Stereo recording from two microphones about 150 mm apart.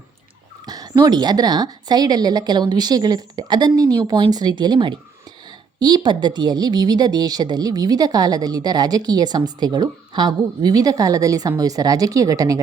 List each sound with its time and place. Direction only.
0.6 s a woman's voice: 25° right (ahead or behind)